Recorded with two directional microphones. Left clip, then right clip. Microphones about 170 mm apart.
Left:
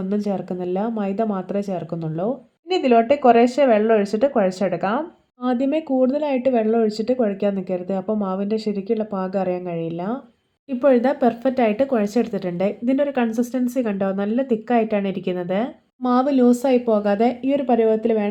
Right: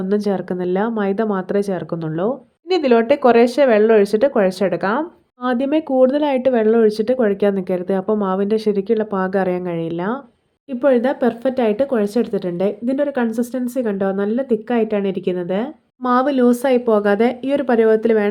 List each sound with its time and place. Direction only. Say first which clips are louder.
0.1 s speech: right 6 dB; 30° right (ahead or behind)